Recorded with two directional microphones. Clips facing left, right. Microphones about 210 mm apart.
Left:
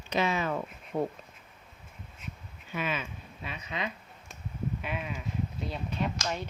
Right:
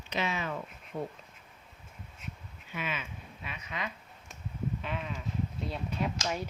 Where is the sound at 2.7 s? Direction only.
40° left (ahead or behind).